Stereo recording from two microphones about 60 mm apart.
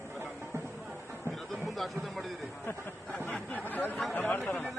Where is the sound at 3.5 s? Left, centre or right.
Left.